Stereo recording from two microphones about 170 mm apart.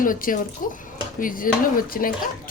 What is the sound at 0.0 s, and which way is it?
Speech, 55° left (ahead or behind).